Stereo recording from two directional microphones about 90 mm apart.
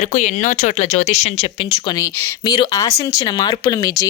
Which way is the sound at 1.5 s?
85° left.